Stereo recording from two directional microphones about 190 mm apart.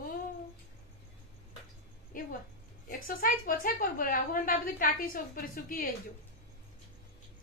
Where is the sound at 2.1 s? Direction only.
45° left (ahead or behind).